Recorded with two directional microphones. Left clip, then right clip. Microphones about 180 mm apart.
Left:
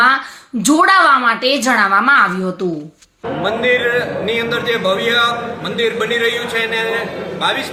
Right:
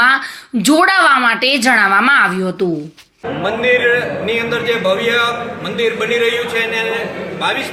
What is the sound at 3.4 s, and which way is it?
A man's voice, centre (ahead or behind).